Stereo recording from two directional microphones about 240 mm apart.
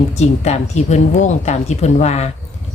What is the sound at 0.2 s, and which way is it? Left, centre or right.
Speech, left.